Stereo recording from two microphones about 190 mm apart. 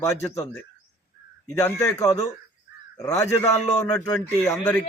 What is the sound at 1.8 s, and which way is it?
Speech, 15° left (ahead or behind).